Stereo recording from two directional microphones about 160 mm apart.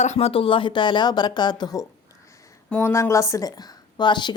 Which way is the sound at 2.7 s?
15° left (ahead or behind).